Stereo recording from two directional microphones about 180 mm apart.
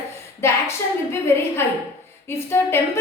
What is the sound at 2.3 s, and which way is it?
Speech, 15° left (ahead or behind).